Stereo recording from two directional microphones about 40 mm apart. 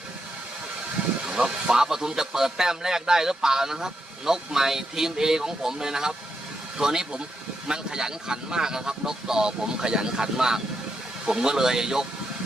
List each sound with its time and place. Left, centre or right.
1.3 s a man's voice: centre